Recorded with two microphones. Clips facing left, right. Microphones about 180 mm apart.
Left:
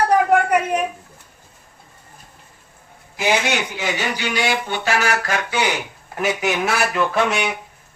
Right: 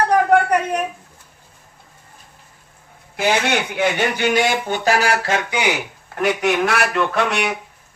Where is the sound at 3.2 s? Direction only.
60° right (ahead or behind); by 5.6 s 20° right (ahead or behind).